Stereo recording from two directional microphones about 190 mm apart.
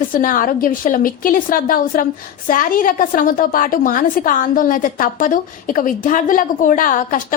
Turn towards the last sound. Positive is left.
turn(degrees=45)  # may be behind; listen again after turning